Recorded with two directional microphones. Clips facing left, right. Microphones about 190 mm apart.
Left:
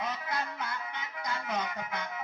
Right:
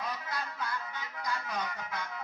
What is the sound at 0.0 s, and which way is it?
Music, 20° left (ahead or behind).